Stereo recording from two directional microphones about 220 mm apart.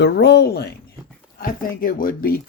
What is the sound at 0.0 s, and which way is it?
Speech, 50° left (ahead or behind).